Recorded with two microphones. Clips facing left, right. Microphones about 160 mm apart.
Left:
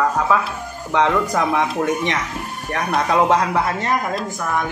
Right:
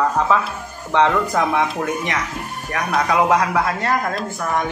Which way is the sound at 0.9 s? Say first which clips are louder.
Right 1 dB; 10° left (ahead or behind).